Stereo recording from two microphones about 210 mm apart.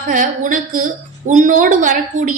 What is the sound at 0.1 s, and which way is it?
A woman's voice, 40° right (ahead or behind).